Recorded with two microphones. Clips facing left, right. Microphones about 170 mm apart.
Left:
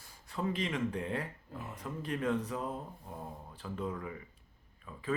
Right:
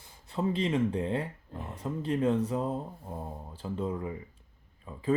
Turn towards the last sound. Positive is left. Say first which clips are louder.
# right 4 dB
turn(degrees=-30)  # may be behind; listen again after turning